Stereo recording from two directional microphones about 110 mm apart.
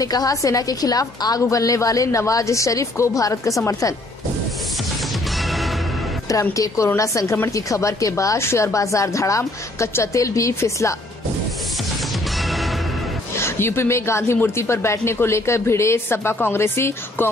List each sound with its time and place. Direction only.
0.0 s a woman's voice: 35° left (ahead or behind)
5.4 s music: centre (ahead or behind)
6.5 s a woman's voice: 30° left (ahead or behind)
12.4 s music: centre (ahead or behind)
13.4 s a woman's voice: 25° left (ahead or behind)